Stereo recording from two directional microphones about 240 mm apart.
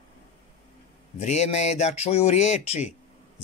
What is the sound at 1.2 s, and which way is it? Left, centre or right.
Speech, left.